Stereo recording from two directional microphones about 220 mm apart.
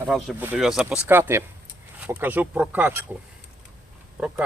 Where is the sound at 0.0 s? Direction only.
5° right (ahead or behind).